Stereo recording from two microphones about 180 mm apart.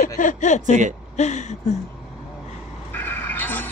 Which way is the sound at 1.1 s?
40° left (ahead or behind).